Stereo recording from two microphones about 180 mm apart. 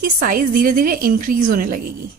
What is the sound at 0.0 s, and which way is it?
A woman's voice, 55° right (ahead or behind).